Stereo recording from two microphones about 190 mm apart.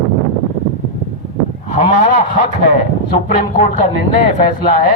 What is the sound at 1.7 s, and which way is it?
Speech, 40° left (ahead or behind).